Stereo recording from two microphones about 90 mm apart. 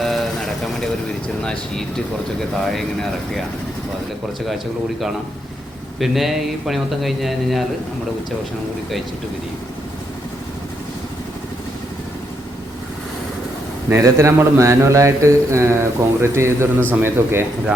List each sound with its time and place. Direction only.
0.0 s vehicle: centre (ahead or behind)
1.4 s a man's voice: 10° left (ahead or behind)
4.4 s a man's voice: centre (ahead or behind)
13.9 s speech: 35° right (ahead or behind)